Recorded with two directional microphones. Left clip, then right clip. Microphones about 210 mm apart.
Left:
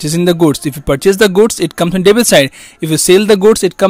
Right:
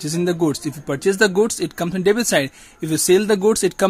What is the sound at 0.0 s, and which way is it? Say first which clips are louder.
Speech: left 9 dB; 35° left (ahead or behind).